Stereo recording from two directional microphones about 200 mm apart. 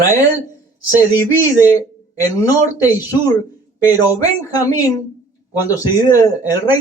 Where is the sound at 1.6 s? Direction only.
10° right (ahead or behind).